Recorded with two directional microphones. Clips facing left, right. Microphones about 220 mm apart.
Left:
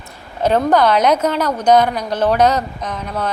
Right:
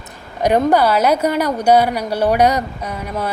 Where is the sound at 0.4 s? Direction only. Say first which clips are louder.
Even; 10° right (ahead or behind).